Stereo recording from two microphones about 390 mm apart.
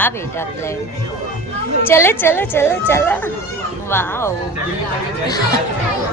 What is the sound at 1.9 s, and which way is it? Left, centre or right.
Speech, centre.